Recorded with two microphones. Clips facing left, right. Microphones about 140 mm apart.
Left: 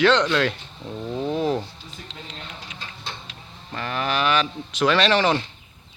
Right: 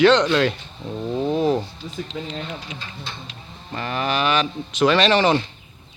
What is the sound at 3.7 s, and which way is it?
Speech, 5° right (ahead or behind).